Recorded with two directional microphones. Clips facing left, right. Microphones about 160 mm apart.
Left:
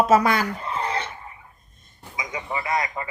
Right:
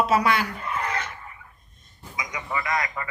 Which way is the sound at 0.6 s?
30° left (ahead or behind).